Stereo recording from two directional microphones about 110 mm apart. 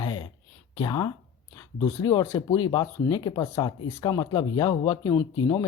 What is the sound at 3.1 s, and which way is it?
Speech, 45° left (ahead or behind).